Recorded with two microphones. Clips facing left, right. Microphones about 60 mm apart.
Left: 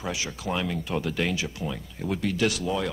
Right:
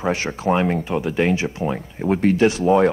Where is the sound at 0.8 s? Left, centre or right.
Right.